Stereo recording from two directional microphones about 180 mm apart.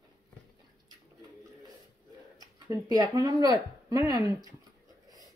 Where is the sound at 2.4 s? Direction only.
20° right (ahead or behind).